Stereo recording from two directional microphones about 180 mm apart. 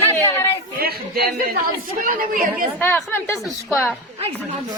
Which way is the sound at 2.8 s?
10° left (ahead or behind).